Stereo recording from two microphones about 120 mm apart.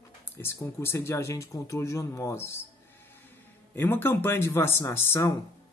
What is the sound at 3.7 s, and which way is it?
Speech, 20° left (ahead or behind).